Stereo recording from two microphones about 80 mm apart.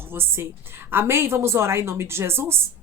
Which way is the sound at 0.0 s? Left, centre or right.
Right.